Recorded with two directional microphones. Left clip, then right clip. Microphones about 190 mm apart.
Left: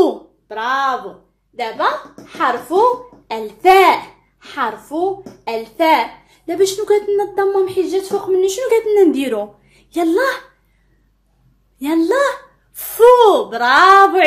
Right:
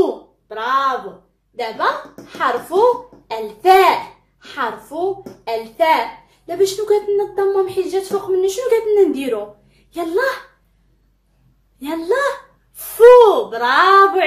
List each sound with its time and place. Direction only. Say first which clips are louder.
0.0 s a sound: left 3 dB; 45° left (ahead or behind)
1.6 s a woman's voice: left 1 dB; 35° left (ahead or behind)
11.8 s a woman's voice: left 3 dB; 45° left (ahead or behind)